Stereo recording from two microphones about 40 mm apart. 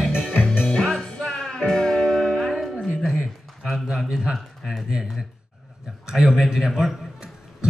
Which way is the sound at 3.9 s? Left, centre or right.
Right.